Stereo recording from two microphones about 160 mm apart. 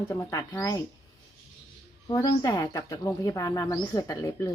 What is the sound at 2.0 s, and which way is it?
Speech, 20° left (ahead or behind).